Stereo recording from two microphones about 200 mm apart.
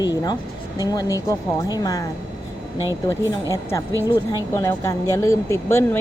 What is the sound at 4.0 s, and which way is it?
Speech, 15° left (ahead or behind).